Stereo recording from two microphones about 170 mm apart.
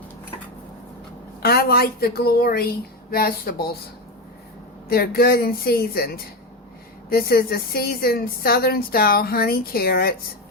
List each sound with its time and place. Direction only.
1.4 s a woman's voice: 65° left (ahead or behind)
4.9 s a woman's voice: 65° left (ahead or behind)